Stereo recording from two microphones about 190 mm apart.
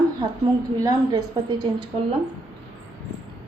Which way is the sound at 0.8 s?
20° right (ahead or behind).